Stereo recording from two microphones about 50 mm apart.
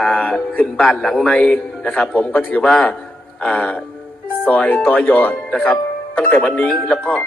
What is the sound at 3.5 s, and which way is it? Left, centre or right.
Speech, left.